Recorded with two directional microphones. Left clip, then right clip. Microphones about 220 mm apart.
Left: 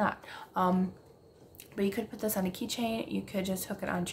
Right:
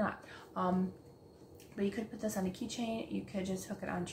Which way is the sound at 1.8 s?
45° left (ahead or behind).